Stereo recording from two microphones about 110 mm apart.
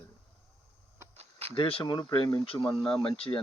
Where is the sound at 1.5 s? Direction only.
60° left (ahead or behind).